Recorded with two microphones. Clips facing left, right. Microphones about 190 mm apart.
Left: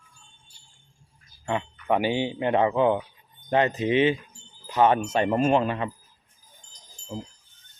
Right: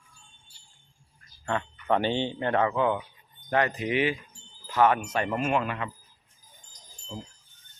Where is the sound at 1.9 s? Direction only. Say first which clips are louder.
Left 2 dB; 10° left (ahead or behind); by 5.9 s 30° left (ahead or behind).